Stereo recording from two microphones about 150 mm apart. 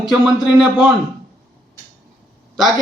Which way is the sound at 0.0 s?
Centre (ahead or behind).